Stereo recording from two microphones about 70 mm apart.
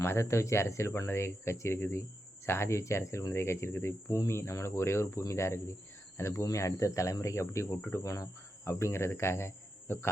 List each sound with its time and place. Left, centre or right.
0.0 s speech: left
5.3 s cricket: left
7.9 s speech: left